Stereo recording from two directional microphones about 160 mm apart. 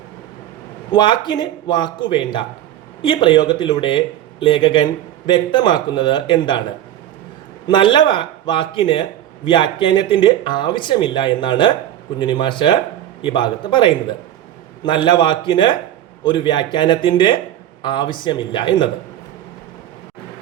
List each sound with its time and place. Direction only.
0.9 s speech: 30° left (ahead or behind)
7.7 s speech: 30° left (ahead or behind)